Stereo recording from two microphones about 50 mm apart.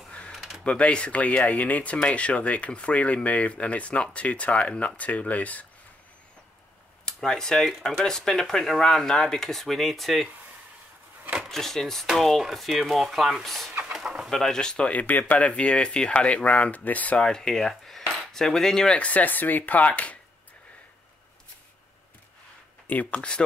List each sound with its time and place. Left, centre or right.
0.3 s a sound: centre
0.7 s speech: left
7.1 s speech: centre
11.5 s speech: centre
13.9 s bird: centre
14.3 s speech: centre
14.9 s speech: left
17.2 s cutlery: centre
18.9 s speech: left
22.8 s speech: left